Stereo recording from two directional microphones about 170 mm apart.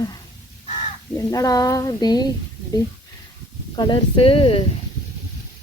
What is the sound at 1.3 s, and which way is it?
Speech, 20° left (ahead or behind).